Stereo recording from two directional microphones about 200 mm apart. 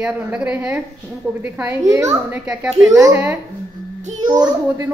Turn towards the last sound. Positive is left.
turn(degrees=-20)  # may be behind; listen again after turning